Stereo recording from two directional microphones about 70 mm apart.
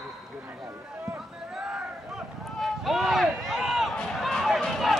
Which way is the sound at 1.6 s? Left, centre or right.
Centre.